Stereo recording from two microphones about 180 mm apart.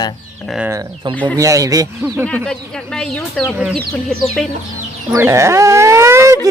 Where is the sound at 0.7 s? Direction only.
20° right (ahead or behind).